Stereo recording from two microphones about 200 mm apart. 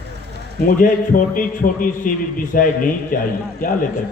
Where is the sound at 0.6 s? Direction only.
45° left (ahead or behind).